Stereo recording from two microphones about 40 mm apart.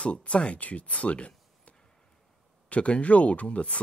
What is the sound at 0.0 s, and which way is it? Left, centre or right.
Speech, left.